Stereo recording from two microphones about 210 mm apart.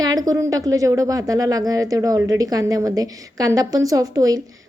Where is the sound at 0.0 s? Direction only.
15° right (ahead or behind).